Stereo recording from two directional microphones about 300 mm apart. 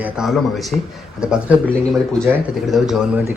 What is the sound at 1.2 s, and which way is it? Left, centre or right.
Speech, centre.